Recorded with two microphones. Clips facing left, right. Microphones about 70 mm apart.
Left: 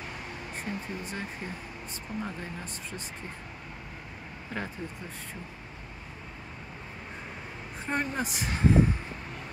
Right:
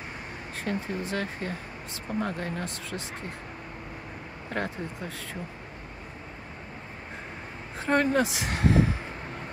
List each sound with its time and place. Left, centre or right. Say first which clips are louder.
0.6 s speech: right 6 dB; right
2.2 s speech: right 6 dB; right
4.5 s speech: right 5 dB; right
7.8 s speech: right 8 dB; right